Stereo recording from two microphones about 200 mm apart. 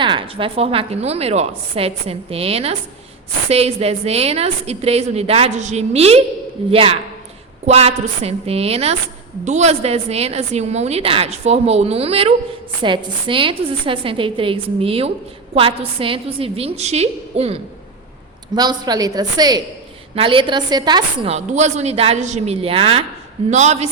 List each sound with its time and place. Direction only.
0.0 s a woman's voice: 25° right (ahead or behind)
18.5 s a woman's voice: 20° right (ahead or behind); by 23.9 s 35° right (ahead or behind)